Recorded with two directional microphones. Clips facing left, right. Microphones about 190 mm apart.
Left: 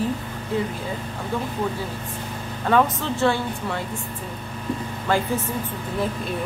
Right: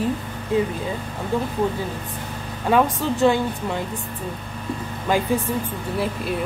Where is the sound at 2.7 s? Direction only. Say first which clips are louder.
Right 1 dB; 15° right (ahead or behind).